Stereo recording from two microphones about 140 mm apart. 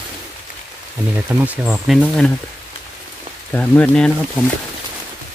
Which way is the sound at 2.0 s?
5° left (ahead or behind).